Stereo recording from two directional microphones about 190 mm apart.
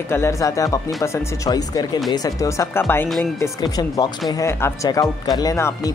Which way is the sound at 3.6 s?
20° left (ahead or behind).